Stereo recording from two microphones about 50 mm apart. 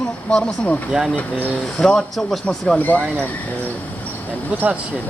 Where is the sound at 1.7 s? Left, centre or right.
Centre.